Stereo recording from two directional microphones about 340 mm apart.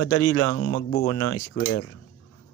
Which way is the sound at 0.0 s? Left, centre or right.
Left.